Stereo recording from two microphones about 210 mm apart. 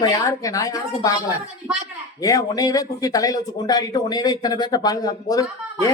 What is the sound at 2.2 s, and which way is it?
Speech, 15° left (ahead or behind).